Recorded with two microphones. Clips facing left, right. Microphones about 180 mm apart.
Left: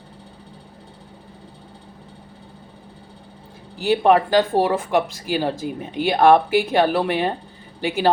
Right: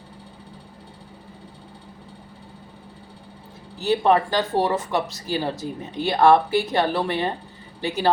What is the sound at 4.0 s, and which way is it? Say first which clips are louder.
Speech: left 5 dB; 50° left (ahead or behind).